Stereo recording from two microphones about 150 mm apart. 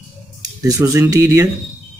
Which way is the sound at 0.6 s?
20° right (ahead or behind).